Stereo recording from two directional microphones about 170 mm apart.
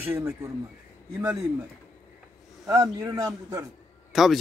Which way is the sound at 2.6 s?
20° right (ahead or behind).